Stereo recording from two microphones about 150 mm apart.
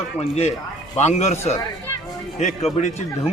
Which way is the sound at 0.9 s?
50° left (ahead or behind).